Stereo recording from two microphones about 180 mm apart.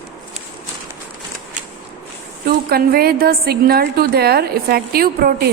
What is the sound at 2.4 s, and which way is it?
A woman's voice, 60° right (ahead or behind).